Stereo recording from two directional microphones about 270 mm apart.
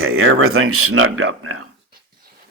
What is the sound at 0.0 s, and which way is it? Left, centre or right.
Speech, right.